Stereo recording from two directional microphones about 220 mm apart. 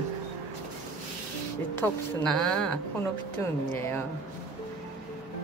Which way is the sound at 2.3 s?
5° left (ahead or behind).